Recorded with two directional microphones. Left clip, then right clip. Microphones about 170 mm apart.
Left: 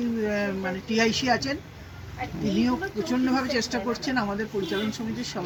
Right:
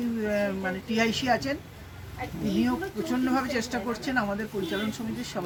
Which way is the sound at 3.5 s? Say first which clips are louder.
Left 3 dB; 35° right (ahead or behind).